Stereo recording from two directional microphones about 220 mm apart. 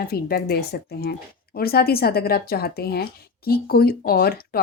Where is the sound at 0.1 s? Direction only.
45° left (ahead or behind).